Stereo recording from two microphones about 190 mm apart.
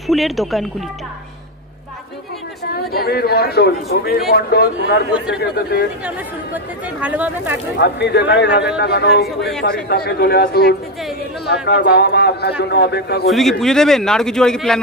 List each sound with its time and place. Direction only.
0.0 s a man's voice: centre (ahead or behind)
2.7 s a man's voice: 55° left (ahead or behind)
6.0 s speech: 10° right (ahead or behind)
7.8 s a man's voice: 60° left (ahead or behind)
13.3 s a man's voice: centre (ahead or behind)